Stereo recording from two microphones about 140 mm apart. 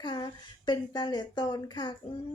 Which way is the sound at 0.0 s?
35° left (ahead or behind).